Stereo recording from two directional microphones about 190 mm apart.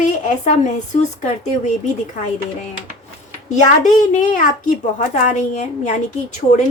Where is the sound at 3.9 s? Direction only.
40° left (ahead or behind).